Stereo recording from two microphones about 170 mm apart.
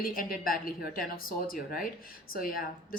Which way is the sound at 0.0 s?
55° left (ahead or behind).